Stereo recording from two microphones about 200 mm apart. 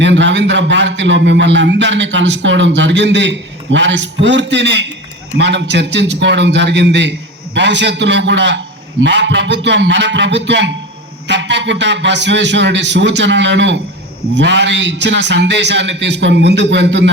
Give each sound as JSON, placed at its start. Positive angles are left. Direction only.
{"t": 0.0, "sound": "a man's voice", "side_deg": -65}